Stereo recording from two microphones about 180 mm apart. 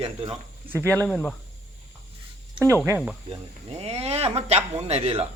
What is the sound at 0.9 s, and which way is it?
Speech, 5° left (ahead or behind).